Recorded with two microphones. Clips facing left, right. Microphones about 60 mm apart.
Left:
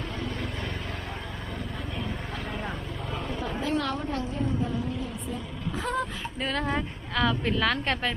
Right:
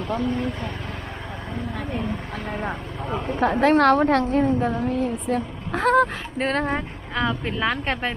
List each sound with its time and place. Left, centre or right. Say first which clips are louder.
0.2 s speech: right 8 dB; right
2.6 s speech: right 6 dB; right
3.6 s a woman's voice: right 13 dB; right
6.7 s speech: right 2 dB; centre